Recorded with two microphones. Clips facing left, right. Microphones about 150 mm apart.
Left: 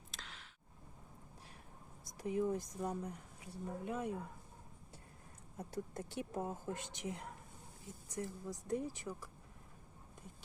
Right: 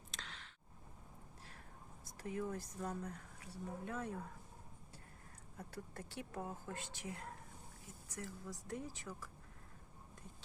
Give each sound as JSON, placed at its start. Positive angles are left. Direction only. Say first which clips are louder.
{"t": 0.1, "sound": "a sound", "louder": "right 1 dB", "side_deg": 0}
{"t": 2.0, "sound": "speech", "louder": "left 6 dB", "side_deg": 15}
{"t": 5.5, "sound": "speech", "louder": "left 6 dB", "side_deg": 20}